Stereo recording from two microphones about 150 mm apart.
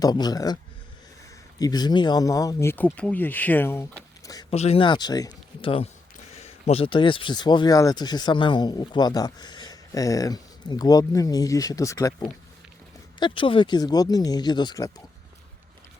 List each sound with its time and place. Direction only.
0.0 s speech: 25° left (ahead or behind)
4.5 s speech: 45° left (ahead or behind); by 5.7 s 25° left (ahead or behind)
6.4 s speech: 40° left (ahead or behind)